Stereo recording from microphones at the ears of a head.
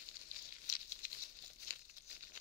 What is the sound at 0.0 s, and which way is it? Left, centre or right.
Crumpling, left.